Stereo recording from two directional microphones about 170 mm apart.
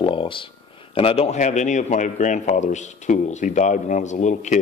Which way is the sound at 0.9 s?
35° left (ahead or behind).